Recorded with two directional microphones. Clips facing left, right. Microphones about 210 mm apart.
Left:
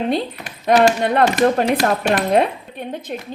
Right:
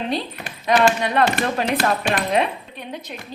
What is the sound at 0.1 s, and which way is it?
Speech, 50° left (ahead or behind).